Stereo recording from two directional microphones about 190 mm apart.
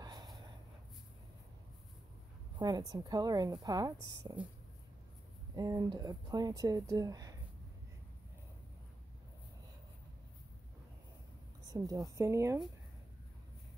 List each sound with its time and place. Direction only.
0.0 s a sound: 20° right (ahead or behind)
2.6 s speech: 20° right (ahead or behind)
5.6 s speech: 20° right (ahead or behind)
11.6 s a woman's voice: 20° right (ahead or behind)